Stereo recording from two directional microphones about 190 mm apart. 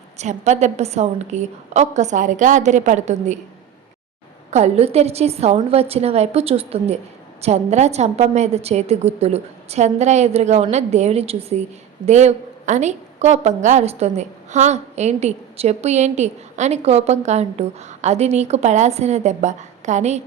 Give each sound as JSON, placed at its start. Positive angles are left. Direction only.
{"t": 0.2, "sound": "a woman's voice", "side_deg": -40}
{"t": 4.5, "sound": "a woman's voice", "side_deg": -35}